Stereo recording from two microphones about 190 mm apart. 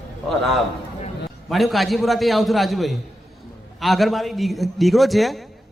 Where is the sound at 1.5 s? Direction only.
Centre (ahead or behind).